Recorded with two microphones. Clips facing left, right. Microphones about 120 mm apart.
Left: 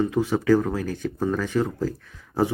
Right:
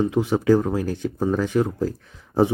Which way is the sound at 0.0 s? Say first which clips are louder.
Right 2 dB; 20° right (ahead or behind).